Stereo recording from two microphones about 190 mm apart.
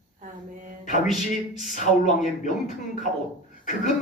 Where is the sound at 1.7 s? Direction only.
40° left (ahead or behind).